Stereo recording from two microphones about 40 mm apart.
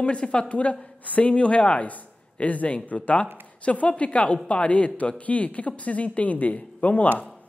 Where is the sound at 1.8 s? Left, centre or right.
Left.